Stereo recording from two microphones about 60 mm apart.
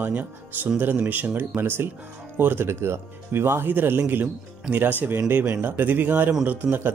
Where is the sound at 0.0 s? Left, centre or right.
Right.